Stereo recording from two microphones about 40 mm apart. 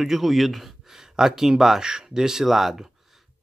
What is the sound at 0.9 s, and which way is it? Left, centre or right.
Speech, centre.